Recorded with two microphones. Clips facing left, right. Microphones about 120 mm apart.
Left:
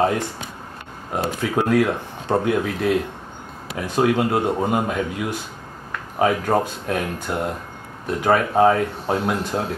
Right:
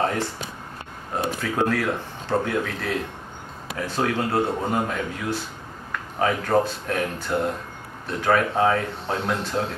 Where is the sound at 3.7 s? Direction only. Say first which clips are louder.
Left 5 dB; 15° left (ahead or behind).